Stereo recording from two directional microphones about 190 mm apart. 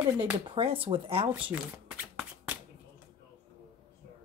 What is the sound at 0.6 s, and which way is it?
Speech, 30° right (ahead or behind).